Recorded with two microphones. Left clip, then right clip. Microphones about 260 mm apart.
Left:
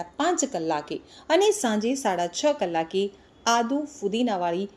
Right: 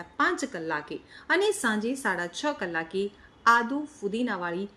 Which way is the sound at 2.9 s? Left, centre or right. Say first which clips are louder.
Left 4 dB; centre.